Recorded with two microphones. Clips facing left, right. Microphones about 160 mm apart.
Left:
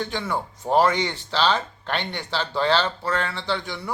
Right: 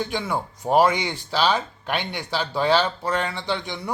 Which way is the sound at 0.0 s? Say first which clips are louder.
Right 1 dB; 10° right (ahead or behind).